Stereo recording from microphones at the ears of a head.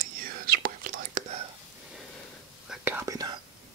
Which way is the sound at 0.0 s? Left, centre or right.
Right.